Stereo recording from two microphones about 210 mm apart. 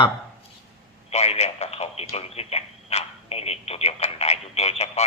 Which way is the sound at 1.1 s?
30° left (ahead or behind).